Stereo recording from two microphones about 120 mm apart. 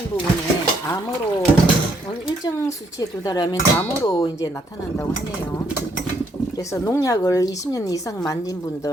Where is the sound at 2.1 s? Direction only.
40° left (ahead or behind).